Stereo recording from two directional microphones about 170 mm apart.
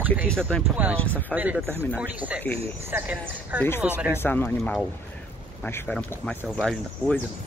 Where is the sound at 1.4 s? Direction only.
10° right (ahead or behind).